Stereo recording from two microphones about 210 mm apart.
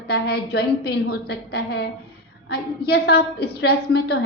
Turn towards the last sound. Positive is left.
turn(degrees=50)  # may be behind; listen again after turning